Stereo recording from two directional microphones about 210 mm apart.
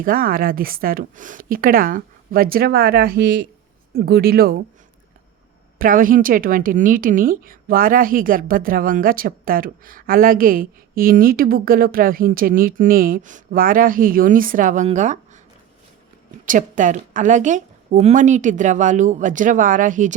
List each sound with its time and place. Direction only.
0.0 s a woman's voice: 45° right (ahead or behind)
5.8 s a woman's voice: 40° right (ahead or behind)
16.5 s a woman's voice: 40° right (ahead or behind)